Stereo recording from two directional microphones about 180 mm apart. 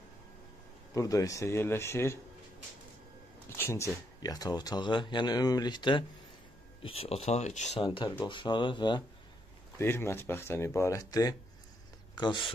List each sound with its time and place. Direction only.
0.9 s speech: 20° left (ahead or behind)
3.4 s speech: 15° left (ahead or behind); by 7.8 s 40° left (ahead or behind)
7.8 s speech: 25° left (ahead or behind)
9.8 s speech: 15° left (ahead or behind)